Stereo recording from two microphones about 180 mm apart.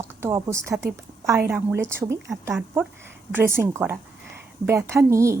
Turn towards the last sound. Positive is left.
turn(degrees=-15)  # may be behind; listen again after turning